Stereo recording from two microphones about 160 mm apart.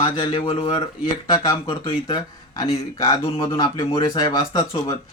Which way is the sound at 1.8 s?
25° left (ahead or behind).